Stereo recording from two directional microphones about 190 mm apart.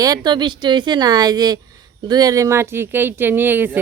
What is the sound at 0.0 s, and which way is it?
Speech, 20° right (ahead or behind).